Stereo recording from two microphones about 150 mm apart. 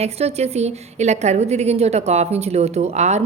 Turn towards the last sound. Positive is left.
turn(degrees=-50)  # may be behind; listen again after turning